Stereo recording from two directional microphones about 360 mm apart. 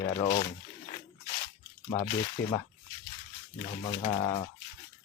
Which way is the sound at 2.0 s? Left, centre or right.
Centre.